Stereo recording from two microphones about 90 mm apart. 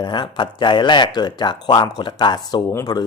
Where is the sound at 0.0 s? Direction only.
60° left (ahead or behind).